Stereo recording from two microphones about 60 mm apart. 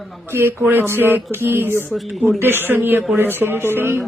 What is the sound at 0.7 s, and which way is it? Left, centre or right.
Music, right.